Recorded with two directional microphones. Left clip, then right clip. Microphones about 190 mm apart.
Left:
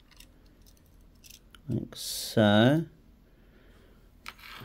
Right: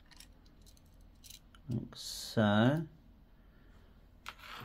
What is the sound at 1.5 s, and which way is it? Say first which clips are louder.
Speech: left 8 dB; 55° left (ahead or behind).